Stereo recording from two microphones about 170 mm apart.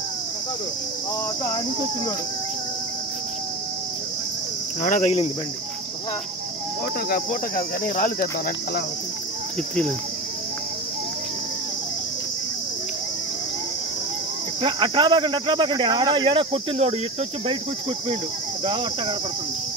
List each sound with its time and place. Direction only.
4.8 s cricket: 50° left (ahead or behind)
7.1 s cricket: 60° left (ahead or behind)
14.6 s speech: 25° right (ahead or behind)
18.7 s speech: 30° right (ahead or behind)